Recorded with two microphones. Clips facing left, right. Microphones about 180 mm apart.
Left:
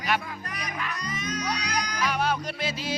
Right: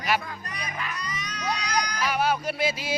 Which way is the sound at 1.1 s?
50° left (ahead or behind).